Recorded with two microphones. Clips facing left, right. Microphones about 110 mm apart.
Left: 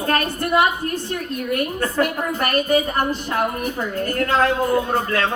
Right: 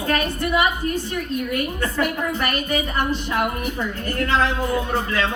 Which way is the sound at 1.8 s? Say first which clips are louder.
Left 2 dB; 40° left (ahead or behind).